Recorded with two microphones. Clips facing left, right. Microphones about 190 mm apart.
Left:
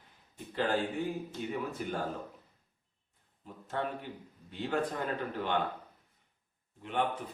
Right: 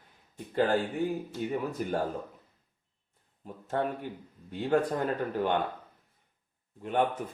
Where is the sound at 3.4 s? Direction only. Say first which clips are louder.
Right 5 dB; 45° right (ahead or behind).